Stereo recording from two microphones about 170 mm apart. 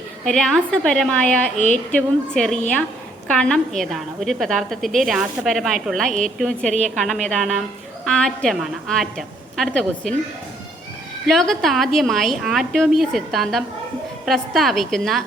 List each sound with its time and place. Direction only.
0.3 s a woman's voice: 5° left (ahead or behind)
1.5 s speech: 45° left (ahead or behind)
1.9 s a woman's voice: 5° left (ahead or behind)
11.3 s a woman's voice: centre (ahead or behind)